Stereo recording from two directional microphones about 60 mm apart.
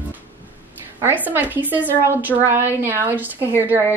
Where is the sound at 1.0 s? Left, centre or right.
Right.